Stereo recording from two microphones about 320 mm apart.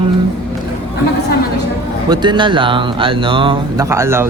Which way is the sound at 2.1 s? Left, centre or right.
Centre.